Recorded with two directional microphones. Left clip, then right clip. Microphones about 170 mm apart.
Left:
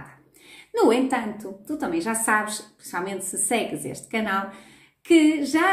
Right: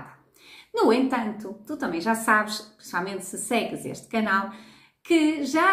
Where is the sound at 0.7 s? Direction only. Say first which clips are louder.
Left 1 dB; 5° left (ahead or behind).